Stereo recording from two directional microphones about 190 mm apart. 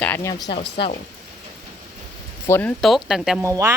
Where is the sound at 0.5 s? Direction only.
30° left (ahead or behind).